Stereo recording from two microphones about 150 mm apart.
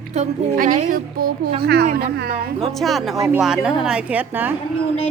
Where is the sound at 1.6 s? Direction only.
90° right.